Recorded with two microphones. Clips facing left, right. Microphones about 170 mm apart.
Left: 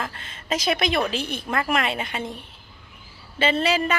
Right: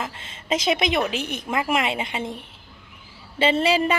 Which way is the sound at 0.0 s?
20° right (ahead or behind).